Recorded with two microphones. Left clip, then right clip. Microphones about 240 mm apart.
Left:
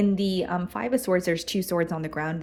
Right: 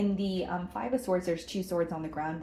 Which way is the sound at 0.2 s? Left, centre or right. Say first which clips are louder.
Left 6 dB; left.